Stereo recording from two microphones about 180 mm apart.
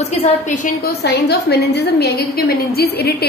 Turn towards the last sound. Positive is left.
turn(degrees=60)  # may be behind; listen again after turning